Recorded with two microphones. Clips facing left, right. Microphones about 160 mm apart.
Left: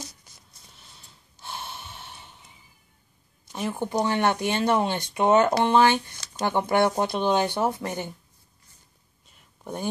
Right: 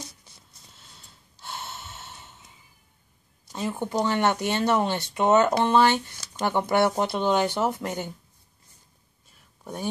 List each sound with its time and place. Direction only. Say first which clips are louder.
1.4 s gasp: even; 15° left (ahead or behind)
3.6 s speech: even; 5° left (ahead or behind)